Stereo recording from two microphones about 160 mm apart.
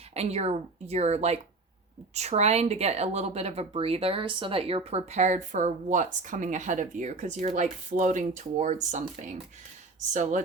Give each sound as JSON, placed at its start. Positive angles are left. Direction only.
{"t": 0.1, "sound": "speech", "side_deg": -40}